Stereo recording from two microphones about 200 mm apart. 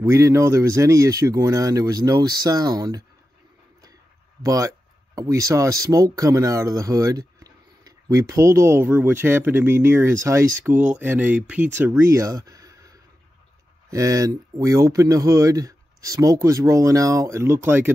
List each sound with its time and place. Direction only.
0.0 s speech: 15° right (ahead or behind)
4.4 s speech: 15° right (ahead or behind)